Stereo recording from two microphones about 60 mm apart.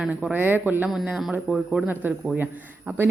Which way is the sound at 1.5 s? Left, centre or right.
Centre.